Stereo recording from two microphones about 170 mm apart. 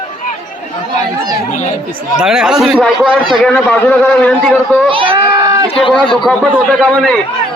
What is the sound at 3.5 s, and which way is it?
A man's voice, 10° left (ahead or behind).